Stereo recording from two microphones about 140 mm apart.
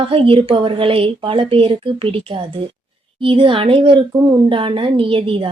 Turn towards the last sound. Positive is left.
turn(degrees=-40)  # may be behind; listen again after turning